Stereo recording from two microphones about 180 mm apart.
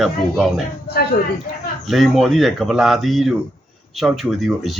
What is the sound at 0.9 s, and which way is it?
Speech, 60° left (ahead or behind).